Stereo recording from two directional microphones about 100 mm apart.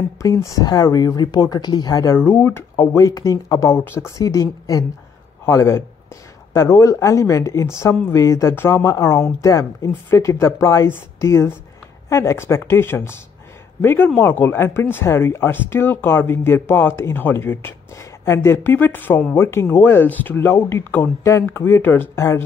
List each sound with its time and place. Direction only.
0.2 s speech: 30° left (ahead or behind)
2.1 s speech: 20° left (ahead or behind)
2.7 s a man's voice: 35° left (ahead or behind)